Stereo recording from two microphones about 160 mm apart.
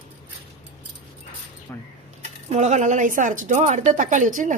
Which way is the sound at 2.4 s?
45° right (ahead or behind).